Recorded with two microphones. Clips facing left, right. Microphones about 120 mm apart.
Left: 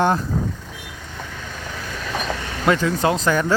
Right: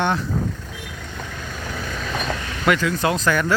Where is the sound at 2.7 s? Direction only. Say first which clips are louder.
Left 1 dB; 30° left (ahead or behind).